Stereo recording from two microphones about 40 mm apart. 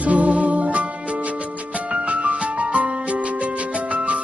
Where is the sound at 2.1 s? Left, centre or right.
Right.